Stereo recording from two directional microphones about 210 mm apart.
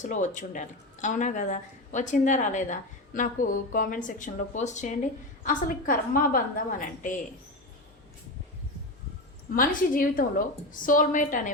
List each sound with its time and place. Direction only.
0.0 s speech: 35° left (ahead or behind)
9.6 s speech: 40° left (ahead or behind)